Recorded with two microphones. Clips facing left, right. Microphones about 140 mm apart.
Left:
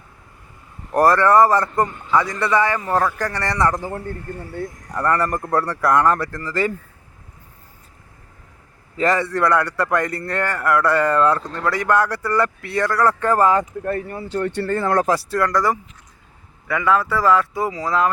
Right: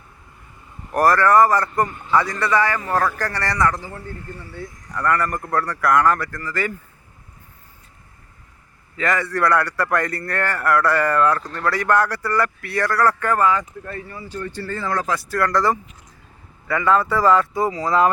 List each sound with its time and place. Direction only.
0.9 s a man's voice: 25° left (ahead or behind)
3.7 s a man's voice: 50° left (ahead or behind)
5.0 s a man's voice: 30° left (ahead or behind)
9.0 s a man's voice: 30° left (ahead or behind)
13.4 s speech: 50° left (ahead or behind)
15.1 s speech: 30° left (ahead or behind)
15.4 s speech: 10° left (ahead or behind)